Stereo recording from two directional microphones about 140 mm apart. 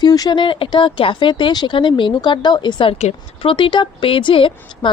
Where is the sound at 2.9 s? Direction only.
50° left (ahead or behind).